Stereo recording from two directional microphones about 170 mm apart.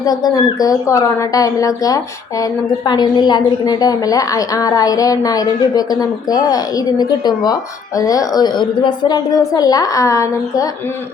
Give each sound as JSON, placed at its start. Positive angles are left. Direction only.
{"t": 0.0, "sound": "a woman's voice", "side_deg": 25}